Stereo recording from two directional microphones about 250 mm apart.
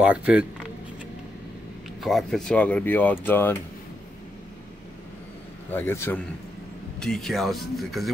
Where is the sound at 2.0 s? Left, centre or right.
Centre.